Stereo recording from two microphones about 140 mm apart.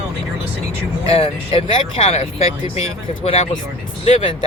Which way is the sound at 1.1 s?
45° left (ahead or behind).